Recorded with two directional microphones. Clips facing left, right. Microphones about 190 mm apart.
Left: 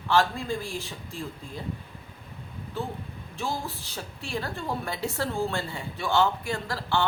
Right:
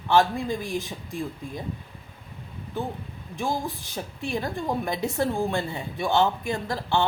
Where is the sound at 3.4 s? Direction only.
15° right (ahead or behind).